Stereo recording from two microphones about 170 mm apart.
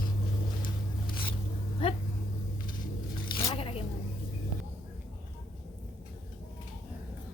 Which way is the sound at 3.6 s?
35° left (ahead or behind).